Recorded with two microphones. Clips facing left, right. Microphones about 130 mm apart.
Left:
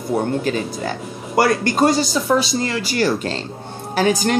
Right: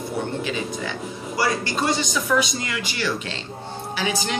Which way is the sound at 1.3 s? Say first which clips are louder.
Left 7 dB; 55° left (ahead or behind).